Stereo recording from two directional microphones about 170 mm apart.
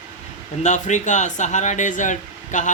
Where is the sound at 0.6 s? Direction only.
45° left (ahead or behind).